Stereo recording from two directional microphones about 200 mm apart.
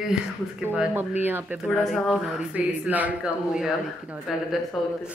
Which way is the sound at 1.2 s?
10° right (ahead or behind).